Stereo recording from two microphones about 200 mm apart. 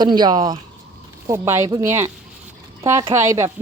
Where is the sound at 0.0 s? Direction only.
20° right (ahead or behind).